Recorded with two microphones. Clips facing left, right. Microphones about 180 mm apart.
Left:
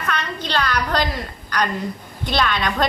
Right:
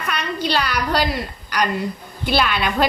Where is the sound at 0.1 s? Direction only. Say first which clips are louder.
Right 3 dB; 10° right (ahead or behind).